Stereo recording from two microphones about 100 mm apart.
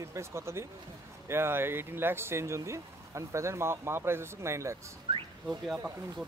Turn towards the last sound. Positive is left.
turn(degrees=-5)  # may be behind; listen again after turning